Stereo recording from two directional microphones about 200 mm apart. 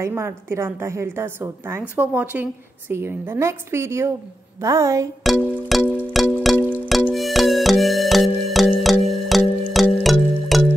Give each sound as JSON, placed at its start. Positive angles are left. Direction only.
{"t": 0.0, "sound": "a woman's voice", "side_deg": -10}
{"t": 5.2, "sound": "music", "side_deg": 0}